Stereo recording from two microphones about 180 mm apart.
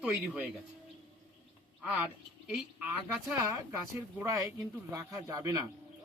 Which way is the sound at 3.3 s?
15° right (ahead or behind).